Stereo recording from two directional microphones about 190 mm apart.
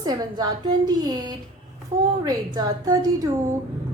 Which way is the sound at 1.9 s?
40° right (ahead or behind).